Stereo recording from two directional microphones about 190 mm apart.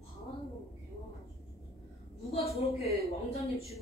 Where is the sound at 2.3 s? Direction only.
35° left (ahead or behind).